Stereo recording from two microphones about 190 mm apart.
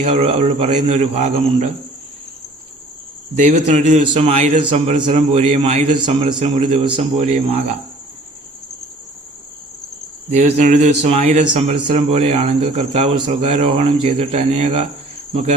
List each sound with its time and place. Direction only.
0.0 s a man's voice: 30° right (ahead or behind)
3.3 s a man's voice: 35° right (ahead or behind)
10.3 s a man's voice: 35° right (ahead or behind)
15.3 s cricket: 30° right (ahead or behind)